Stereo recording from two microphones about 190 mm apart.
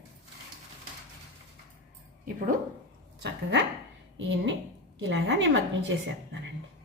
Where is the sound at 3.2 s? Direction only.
70° right (ahead or behind).